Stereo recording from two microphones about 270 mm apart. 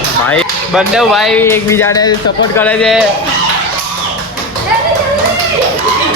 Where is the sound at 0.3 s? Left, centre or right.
Centre.